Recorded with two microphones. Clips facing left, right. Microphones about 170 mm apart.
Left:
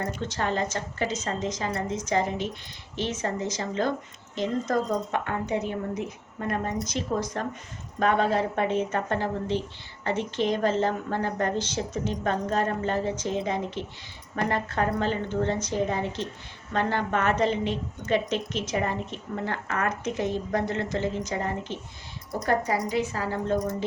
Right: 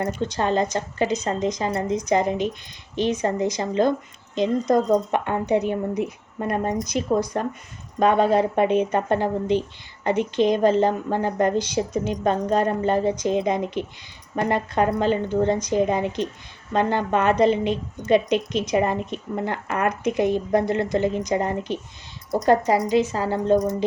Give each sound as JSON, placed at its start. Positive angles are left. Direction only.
{"t": 0.2, "sound": "speech", "side_deg": -15}
{"t": 22.7, "sound": "speech", "side_deg": -90}
{"t": 23.1, "sound": "speech", "side_deg": -30}